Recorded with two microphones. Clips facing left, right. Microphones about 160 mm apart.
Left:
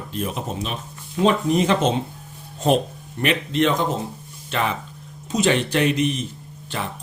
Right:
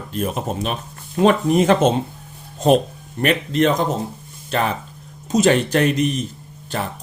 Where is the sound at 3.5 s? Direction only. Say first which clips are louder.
Right 2 dB; 40° right (ahead or behind).